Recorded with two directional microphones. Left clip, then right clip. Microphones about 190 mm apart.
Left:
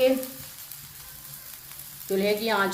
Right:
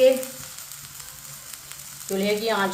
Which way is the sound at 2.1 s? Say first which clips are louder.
Right 1 dB; 50° left (ahead or behind).